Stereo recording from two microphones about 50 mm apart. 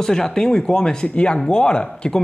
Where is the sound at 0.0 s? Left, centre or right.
Centre.